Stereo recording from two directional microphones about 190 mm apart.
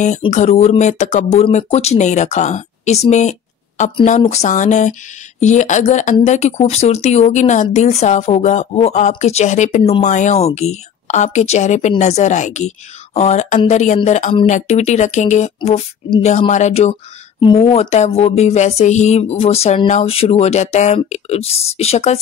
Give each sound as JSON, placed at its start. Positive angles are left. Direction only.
{"t": 0.0, "sound": "speech", "side_deg": 40}